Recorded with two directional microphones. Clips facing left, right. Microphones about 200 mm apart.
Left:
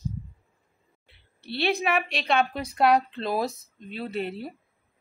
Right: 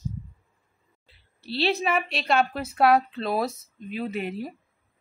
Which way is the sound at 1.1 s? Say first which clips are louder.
Right 2 dB; 60° left (ahead or behind).